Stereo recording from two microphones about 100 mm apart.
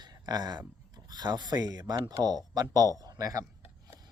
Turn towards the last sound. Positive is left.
turn(degrees=-35)  # may be behind; listen again after turning